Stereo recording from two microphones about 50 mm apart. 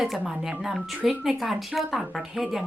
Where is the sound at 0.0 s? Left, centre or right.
Centre.